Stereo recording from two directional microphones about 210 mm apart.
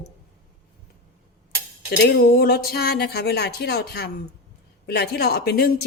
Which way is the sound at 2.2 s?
45° left (ahead or behind).